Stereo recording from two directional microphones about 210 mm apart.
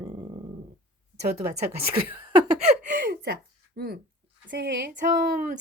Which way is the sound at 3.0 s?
50° right (ahead or behind).